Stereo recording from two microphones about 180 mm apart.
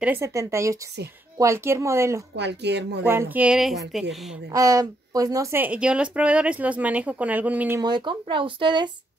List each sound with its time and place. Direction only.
0.0 s speech: 15° right (ahead or behind)
2.3 s speech: 70° right (ahead or behind)
3.1 s a woman's voice: 10° right (ahead or behind)
4.5 s speech: 20° right (ahead or behind)
7.8 s speech: 25° right (ahead or behind)